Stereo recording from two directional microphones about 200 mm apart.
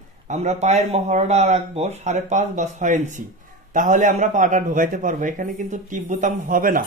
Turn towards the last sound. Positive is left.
turn(degrees=-45)  # may be behind; listen again after turning